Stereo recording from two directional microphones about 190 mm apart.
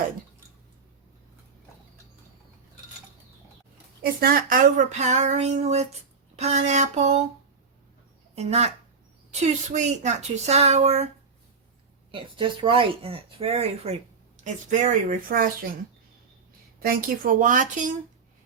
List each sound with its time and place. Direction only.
4.0 s speech: 50° right (ahead or behind)
8.4 s speech: 35° right (ahead or behind)
9.7 s speech: 40° right (ahead or behind)
12.1 s speech: 25° right (ahead or behind); by 15.4 s 45° right (ahead or behind)
16.8 s speech: 45° right (ahead or behind)